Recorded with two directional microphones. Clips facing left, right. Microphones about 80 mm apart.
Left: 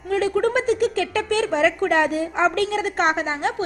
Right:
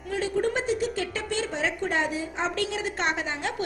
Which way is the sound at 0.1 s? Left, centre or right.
Left.